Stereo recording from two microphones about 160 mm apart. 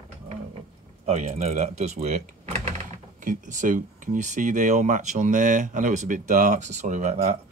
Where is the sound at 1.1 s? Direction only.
45° right (ahead or behind).